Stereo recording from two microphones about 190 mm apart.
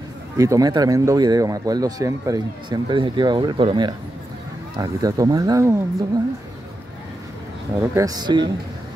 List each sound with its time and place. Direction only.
0.4 s speech: 15° right (ahead or behind)
7.8 s speech: 15° right (ahead or behind)